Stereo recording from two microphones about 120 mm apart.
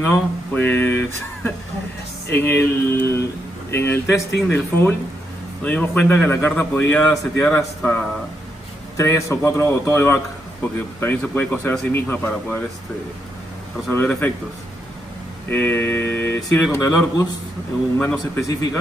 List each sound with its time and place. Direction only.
0.0 s speech: 20° left (ahead or behind)
3.7 s a man's voice: 20° left (ahead or behind)
13.8 s a man's voice: 15° left (ahead or behind)
15.5 s speech: 20° left (ahead or behind)